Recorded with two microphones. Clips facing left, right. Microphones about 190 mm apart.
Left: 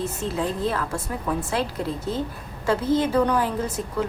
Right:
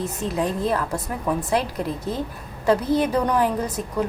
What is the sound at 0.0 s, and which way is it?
Speech, 15° right (ahead or behind).